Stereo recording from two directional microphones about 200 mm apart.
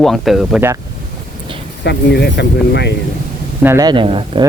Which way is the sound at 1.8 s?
55° left (ahead or behind).